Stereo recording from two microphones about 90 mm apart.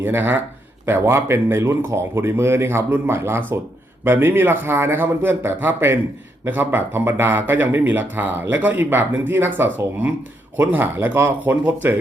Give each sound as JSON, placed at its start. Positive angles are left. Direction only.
{"t": 0.0, "sound": "speech", "side_deg": -25}